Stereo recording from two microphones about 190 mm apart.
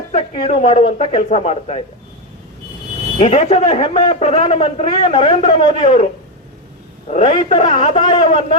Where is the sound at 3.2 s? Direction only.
35° left (ahead or behind).